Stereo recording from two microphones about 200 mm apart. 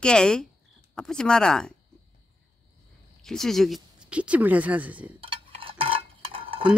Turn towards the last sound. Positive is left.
turn(degrees=-25)  # may be behind; listen again after turning